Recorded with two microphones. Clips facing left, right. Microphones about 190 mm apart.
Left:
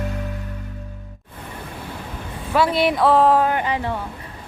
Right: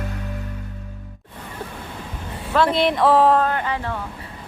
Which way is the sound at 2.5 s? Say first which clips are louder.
Even; 5° left (ahead or behind).